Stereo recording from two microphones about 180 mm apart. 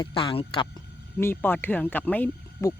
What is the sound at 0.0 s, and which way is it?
Speech, 30° left (ahead or behind).